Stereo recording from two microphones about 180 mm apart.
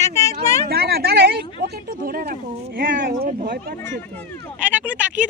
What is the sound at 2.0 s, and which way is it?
Speech, 55° right (ahead or behind).